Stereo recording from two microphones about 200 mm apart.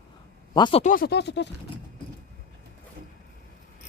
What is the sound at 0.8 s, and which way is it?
Speech, 50° left (ahead or behind).